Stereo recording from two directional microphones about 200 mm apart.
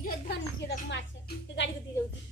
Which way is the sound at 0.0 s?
55° left (ahead or behind).